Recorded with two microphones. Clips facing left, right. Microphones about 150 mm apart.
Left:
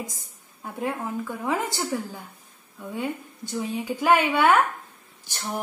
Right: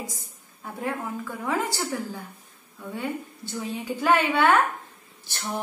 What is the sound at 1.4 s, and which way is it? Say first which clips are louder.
Speech: right 1 dB; 20° left (ahead or behind).